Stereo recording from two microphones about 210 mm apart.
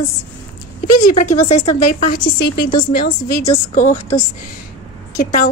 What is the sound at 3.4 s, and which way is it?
Speech, 35° left (ahead or behind).